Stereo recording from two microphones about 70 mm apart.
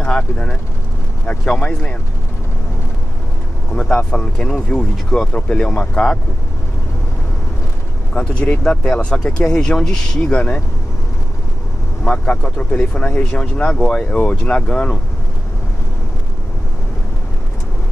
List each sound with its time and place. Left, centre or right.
0.0 s speech: centre
3.7 s speech: centre
8.2 s speech: centre
12.0 s speech: centre